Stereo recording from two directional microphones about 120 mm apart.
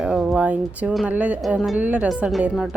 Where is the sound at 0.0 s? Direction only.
Centre (ahead or behind).